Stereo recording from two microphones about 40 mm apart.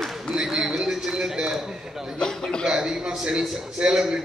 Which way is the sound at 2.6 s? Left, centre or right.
Centre.